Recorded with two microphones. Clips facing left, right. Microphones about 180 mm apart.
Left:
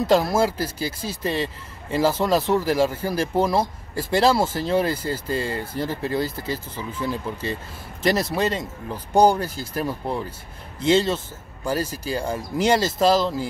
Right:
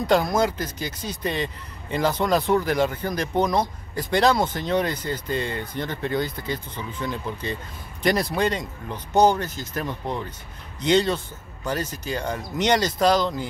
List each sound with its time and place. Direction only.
0.0 s speech: 5° left (ahead or behind)
0.6 s speech: 30° left (ahead or behind)
1.0 s speech: centre (ahead or behind)
5.5 s speech: 30° left (ahead or behind)
5.8 s speech: 5° left (ahead or behind)